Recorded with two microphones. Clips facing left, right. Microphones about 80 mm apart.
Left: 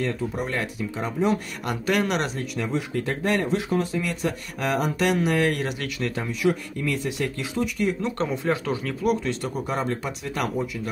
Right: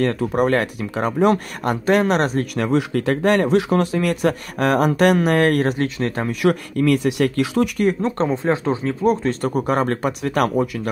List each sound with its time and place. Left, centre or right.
0.0 s speech: right
1.6 s speech: right
2.5 s speech: right
6.2 s speech: right
8.0 s speech: right